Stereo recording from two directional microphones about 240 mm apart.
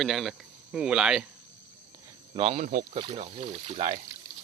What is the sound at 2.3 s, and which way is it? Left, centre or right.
Speech, right.